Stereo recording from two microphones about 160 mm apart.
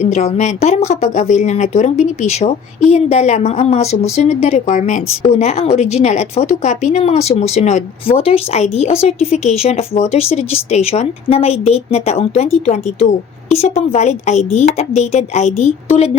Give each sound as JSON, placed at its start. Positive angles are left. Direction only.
{"t": 0.0, "sound": "speech", "side_deg": 40}